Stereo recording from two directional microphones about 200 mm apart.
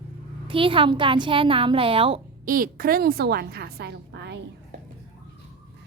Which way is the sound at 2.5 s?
45° right (ahead or behind).